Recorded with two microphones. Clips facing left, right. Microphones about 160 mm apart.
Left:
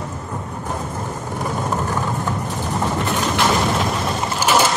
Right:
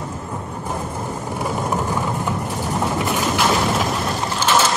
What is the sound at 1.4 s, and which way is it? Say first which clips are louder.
Vehicle: even; 10° right (ahead or behind).